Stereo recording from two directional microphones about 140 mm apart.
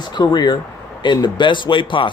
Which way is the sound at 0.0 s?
30° left (ahead or behind).